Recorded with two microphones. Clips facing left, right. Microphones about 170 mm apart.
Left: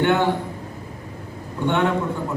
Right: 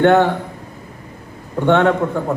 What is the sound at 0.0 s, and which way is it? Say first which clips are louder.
Speech: right 7 dB; 60° right (ahead or behind).